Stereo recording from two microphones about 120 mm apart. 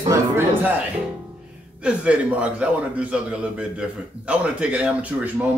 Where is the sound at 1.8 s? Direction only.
10° right (ahead or behind).